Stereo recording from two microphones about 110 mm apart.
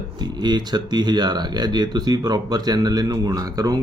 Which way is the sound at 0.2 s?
40° right (ahead or behind).